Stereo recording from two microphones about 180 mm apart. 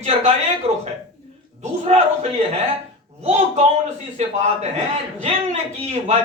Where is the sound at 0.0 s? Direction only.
40° right (ahead or behind).